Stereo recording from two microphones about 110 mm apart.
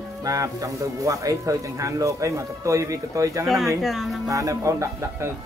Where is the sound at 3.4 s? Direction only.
Centre (ahead or behind).